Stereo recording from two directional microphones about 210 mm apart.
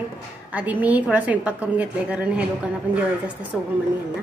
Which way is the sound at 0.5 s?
5° right (ahead or behind).